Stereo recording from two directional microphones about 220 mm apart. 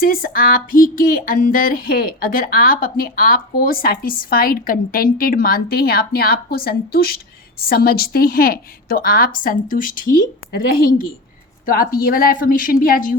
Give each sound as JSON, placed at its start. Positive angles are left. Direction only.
{"t": 0.0, "sound": "speech", "side_deg": 40}